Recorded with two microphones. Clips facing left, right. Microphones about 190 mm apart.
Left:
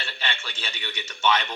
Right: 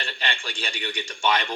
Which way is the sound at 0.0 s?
15° right (ahead or behind).